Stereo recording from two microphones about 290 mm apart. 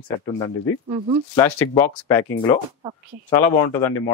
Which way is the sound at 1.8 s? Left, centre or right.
Centre.